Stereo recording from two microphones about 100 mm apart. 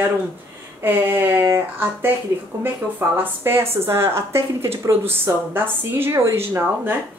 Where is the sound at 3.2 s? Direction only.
20° right (ahead or behind).